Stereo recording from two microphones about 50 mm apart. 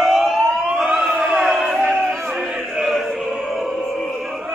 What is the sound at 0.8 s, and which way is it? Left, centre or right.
Siren, right.